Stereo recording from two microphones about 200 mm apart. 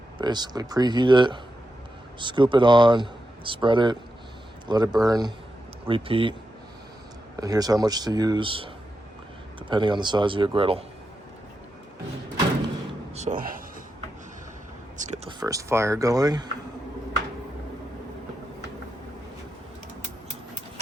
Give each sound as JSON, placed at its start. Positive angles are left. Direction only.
{"t": 0.2, "sound": "speech", "side_deg": -20}
{"t": 7.3, "sound": "speech", "side_deg": -20}
{"t": 13.1, "sound": "speech", "side_deg": -40}
{"t": 14.9, "sound": "a sound", "side_deg": -35}
{"t": 15.4, "sound": "speech", "side_deg": -15}